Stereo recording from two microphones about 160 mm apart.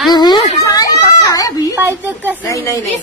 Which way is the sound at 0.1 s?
25° left (ahead or behind).